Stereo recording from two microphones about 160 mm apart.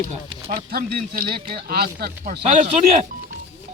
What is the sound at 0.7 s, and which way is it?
Speech, 65° right (ahead or behind).